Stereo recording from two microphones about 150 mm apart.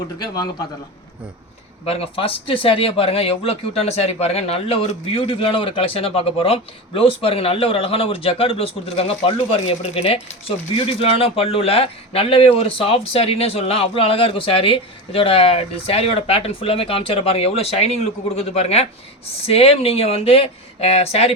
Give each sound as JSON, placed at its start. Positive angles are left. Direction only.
{"t": 1.8, "sound": "speech", "side_deg": 40}